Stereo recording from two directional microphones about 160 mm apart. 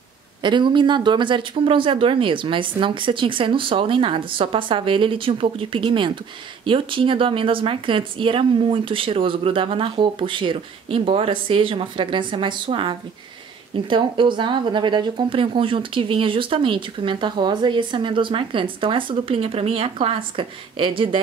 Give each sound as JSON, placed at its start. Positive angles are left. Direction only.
{"t": 0.4, "sound": "speech", "side_deg": -30}